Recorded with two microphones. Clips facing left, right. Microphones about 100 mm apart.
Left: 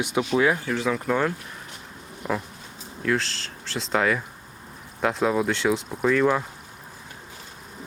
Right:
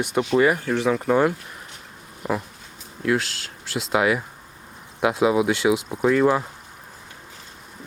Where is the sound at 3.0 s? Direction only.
5° right (ahead or behind).